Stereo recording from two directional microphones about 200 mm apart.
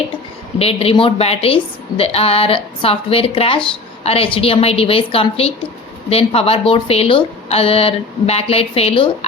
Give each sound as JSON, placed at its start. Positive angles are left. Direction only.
{"t": 0.6, "sound": "a woman's voice", "side_deg": 30}